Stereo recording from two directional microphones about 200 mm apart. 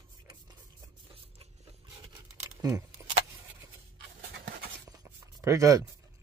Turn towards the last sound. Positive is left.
turn(degrees=-15)  # may be behind; listen again after turning